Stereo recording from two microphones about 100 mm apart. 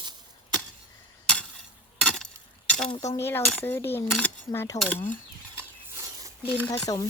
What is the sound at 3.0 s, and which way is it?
Speech, 30° left (ahead or behind).